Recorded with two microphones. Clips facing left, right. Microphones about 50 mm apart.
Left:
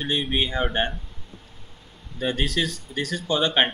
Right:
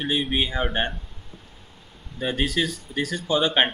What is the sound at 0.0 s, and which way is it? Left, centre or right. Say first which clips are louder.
Speech: right 1 dB; centre.